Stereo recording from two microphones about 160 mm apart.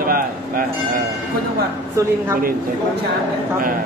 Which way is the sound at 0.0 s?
65° right (ahead or behind).